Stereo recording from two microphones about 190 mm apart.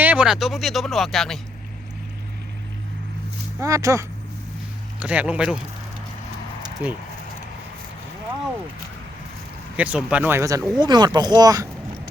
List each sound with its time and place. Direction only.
0.0 s speech: 5° right (ahead or behind)
3.6 s speech: 15° right (ahead or behind)
6.8 s speech: 10° right (ahead or behind)
9.7 s speech: 5° right (ahead or behind)